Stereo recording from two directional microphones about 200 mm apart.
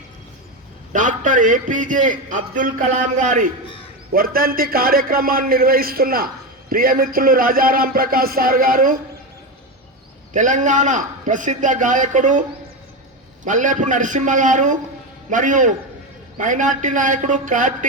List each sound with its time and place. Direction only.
0.9 s a man's voice: 40° right (ahead or behind)
4.1 s music: 45° right (ahead or behind)
10.3 s a man's voice: 40° right (ahead or behind)